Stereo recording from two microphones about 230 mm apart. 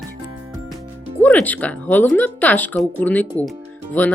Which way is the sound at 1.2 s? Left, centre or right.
Centre.